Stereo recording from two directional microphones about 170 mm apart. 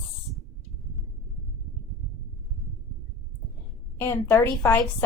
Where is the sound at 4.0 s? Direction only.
15° left (ahead or behind).